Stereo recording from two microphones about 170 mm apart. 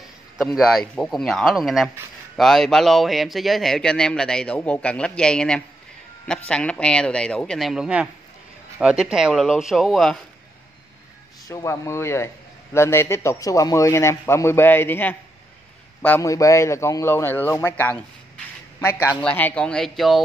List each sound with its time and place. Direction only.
0.4 s speech: centre (ahead or behind)
11.4 s a man's voice: 20° left (ahead or behind); by 20.2 s centre (ahead or behind)